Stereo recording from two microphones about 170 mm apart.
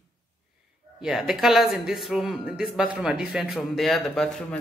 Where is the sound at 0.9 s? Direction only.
Centre (ahead or behind).